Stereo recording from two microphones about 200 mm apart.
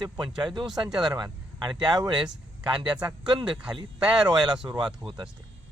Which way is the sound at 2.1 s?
5° right (ahead or behind).